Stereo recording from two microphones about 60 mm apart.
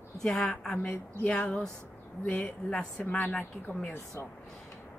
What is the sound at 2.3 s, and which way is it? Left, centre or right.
A woman's voice, centre.